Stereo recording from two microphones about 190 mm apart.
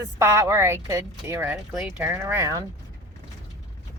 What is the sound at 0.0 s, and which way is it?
A woman's voice, 15° right (ahead or behind).